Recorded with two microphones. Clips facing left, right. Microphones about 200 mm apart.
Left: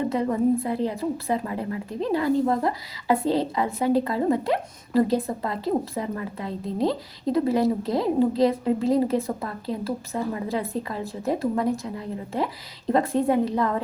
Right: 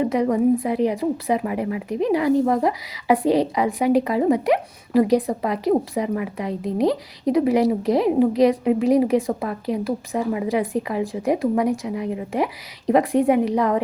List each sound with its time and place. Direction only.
0.0 s a woman's voice: 15° right (ahead or behind)